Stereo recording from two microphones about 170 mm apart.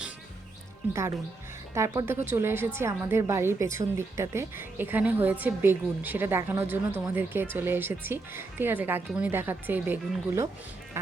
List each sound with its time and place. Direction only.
1.7 s a woman's voice: 20° right (ahead or behind)